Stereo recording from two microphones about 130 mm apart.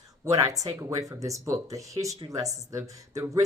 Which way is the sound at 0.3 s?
25° right (ahead or behind).